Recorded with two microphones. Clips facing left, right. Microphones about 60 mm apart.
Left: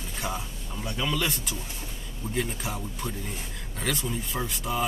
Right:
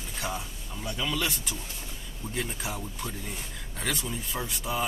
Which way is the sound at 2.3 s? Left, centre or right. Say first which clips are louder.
Left 3 dB; centre.